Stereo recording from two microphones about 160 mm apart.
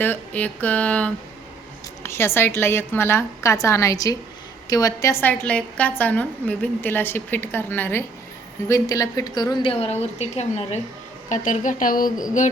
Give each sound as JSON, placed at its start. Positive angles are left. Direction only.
{"t": 0.0, "sound": "a woman's voice", "side_deg": 10}
{"t": 9.7, "sound": "a woman's voice", "side_deg": 40}
{"t": 11.3, "sound": "a woman's voice", "side_deg": 55}